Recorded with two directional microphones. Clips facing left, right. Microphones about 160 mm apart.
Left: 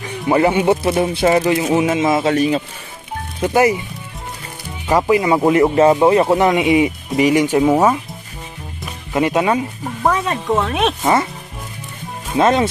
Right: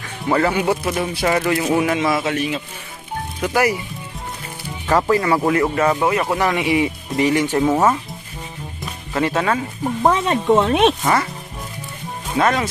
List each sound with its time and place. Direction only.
0.0 s speech: 20° left (ahead or behind)
2.3 s a man's voice: 35° left (ahead or behind)
3.3 s speech: 25° left (ahead or behind)
4.8 s speech: 15° left (ahead or behind)
9.1 s speech: 15° left (ahead or behind)
10.0 s speech: 25° right (ahead or behind)
12.4 s speech: 25° left (ahead or behind)